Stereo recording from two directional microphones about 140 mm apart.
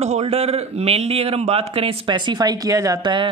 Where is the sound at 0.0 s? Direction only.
50° right (ahead or behind).